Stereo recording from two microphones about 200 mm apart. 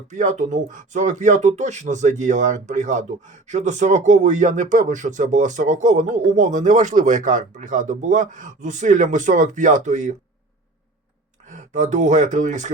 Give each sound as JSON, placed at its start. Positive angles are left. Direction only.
{"t": 0.1, "sound": "speech", "side_deg": -40}
{"t": 11.4, "sound": "speech", "side_deg": -40}